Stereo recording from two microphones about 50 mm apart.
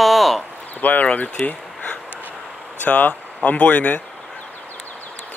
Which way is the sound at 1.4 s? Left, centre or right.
Left.